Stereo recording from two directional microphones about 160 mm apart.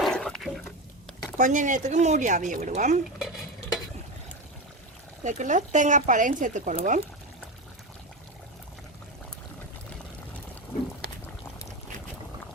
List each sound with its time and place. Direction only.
0.0 s a sound: 5° left (ahead or behind)
1.4 s speech: 50° right (ahead or behind)
5.2 s speech: 50° right (ahead or behind)